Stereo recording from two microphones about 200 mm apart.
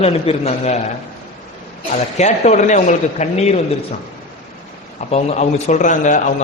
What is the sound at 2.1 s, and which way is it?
A man's voice, 35° left (ahead or behind).